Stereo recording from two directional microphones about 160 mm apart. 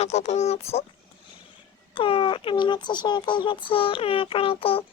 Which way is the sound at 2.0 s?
35° left (ahead or behind).